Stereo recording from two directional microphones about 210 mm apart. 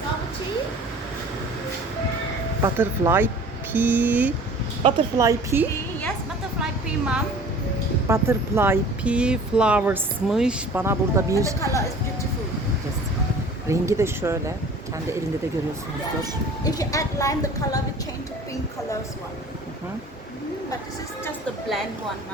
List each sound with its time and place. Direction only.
2.6 s speech: 10° right (ahead or behind)
8.0 s speech: 10° right (ahead or behind)
13.7 s speech: 15° right (ahead or behind)
16.6 s speech: 15° left (ahead or behind)